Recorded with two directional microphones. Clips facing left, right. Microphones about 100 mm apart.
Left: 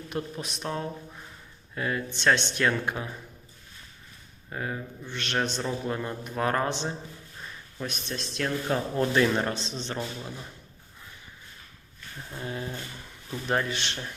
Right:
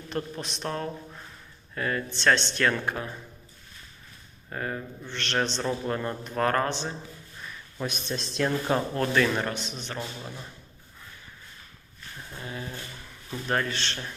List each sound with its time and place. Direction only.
0.1 s a man's voice: 10° left (ahead or behind)
4.4 s a man's voice: 5° left (ahead or behind)
7.8 s speech: 15° right (ahead or behind)
8.1 s speech: 25° right (ahead or behind)
9.0 s speech: 20° left (ahead or behind)
12.4 s speech: 25° left (ahead or behind)
13.5 s a man's voice: 15° left (ahead or behind)